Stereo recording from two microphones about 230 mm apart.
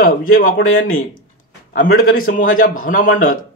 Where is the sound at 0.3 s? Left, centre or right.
Left.